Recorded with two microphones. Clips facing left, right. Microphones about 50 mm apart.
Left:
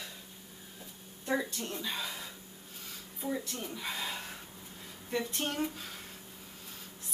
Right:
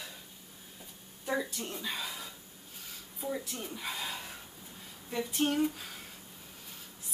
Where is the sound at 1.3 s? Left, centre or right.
Centre.